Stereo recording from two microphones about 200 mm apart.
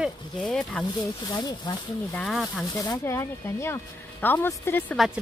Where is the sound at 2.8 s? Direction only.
15° left (ahead or behind).